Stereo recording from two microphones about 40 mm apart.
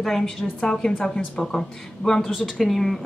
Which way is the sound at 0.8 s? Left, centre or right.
Left.